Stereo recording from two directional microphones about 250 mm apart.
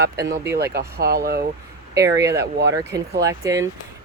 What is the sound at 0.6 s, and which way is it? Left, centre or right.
Speech, right.